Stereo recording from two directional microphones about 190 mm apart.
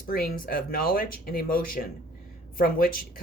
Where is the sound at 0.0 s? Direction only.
50° left (ahead or behind).